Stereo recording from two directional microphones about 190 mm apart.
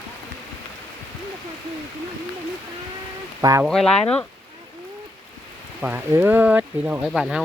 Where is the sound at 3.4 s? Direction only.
15° right (ahead or behind).